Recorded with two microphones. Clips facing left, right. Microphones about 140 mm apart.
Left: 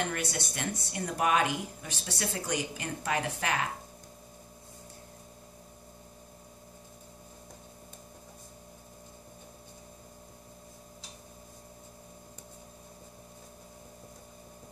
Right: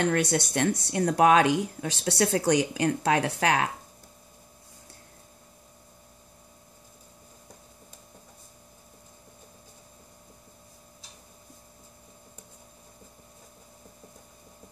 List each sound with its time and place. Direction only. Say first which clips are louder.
0.0 s speech: right 9 dB; 80° right